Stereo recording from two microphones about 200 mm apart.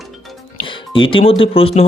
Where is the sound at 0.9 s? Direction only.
25° left (ahead or behind).